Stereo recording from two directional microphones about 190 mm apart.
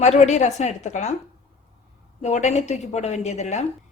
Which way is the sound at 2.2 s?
35° left (ahead or behind).